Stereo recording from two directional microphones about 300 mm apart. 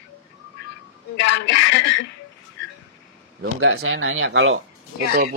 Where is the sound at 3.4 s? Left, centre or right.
Right.